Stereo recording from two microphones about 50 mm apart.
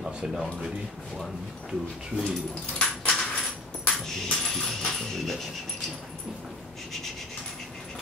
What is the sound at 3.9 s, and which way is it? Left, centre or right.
Coin, centre.